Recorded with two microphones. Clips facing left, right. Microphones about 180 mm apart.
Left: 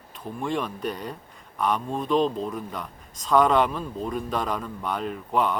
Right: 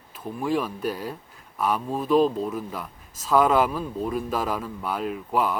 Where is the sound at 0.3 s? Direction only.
5° right (ahead or behind).